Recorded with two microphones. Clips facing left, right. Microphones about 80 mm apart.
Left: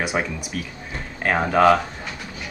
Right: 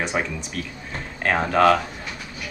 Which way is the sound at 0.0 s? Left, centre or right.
Centre.